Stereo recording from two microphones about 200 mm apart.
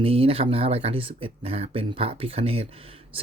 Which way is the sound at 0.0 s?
30° right (ahead or behind).